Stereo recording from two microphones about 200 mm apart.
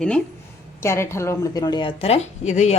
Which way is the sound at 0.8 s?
15° left (ahead or behind).